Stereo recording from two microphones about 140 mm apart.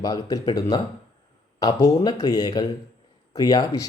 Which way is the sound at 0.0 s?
25° left (ahead or behind).